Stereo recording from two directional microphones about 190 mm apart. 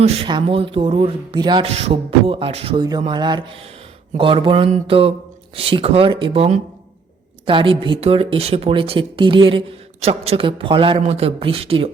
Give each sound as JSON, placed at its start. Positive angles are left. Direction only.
{"t": 0.0, "sound": "speech", "side_deg": -25}